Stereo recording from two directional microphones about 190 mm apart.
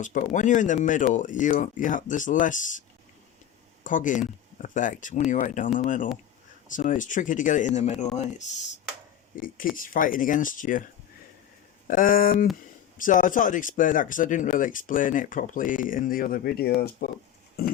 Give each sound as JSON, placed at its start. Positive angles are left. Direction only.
{"t": 0.0, "sound": "speech", "side_deg": 40}
{"t": 3.8, "sound": "speech", "side_deg": 45}
{"t": 9.3, "sound": "speech", "side_deg": 45}
{"t": 11.9, "sound": "speech", "side_deg": 45}